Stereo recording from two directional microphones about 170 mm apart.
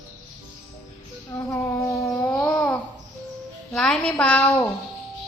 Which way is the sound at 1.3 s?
15° left (ahead or behind).